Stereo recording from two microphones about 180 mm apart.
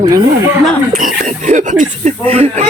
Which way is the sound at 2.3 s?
35° right (ahead or behind).